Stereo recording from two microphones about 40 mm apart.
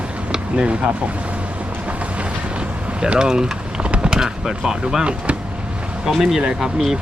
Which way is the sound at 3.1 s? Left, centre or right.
Centre.